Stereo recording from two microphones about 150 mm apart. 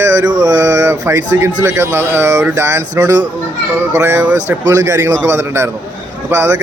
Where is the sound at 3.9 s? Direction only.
15° right (ahead or behind).